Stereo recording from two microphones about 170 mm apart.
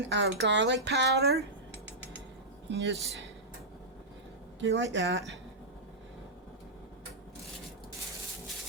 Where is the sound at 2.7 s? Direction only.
90° right.